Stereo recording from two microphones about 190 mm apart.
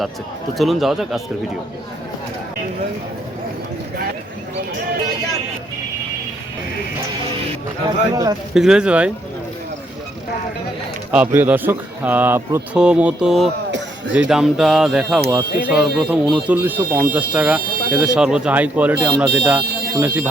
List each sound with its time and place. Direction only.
0.5 s speech: centre (ahead or behind)
8.1 s speech: 20° right (ahead or behind)
8.5 s speech: 5° right (ahead or behind)
11.1 s speech: 10° right (ahead or behind)